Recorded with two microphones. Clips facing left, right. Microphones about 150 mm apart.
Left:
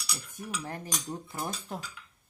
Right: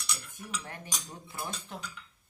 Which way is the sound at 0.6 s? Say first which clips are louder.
Left 6 dB; 40° left (ahead or behind).